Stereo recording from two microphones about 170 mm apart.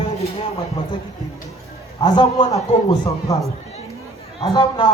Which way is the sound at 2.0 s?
25° left (ahead or behind).